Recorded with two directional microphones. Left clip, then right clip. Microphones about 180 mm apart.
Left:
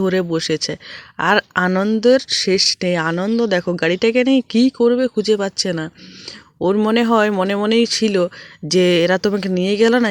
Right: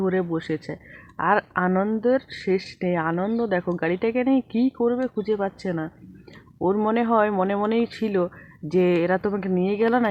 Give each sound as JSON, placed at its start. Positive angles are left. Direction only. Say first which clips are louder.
{"t": 0.0, "sound": "speech", "louder": "left 6 dB", "side_deg": 30}